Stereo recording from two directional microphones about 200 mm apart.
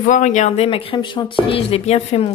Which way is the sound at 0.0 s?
40° left (ahead or behind).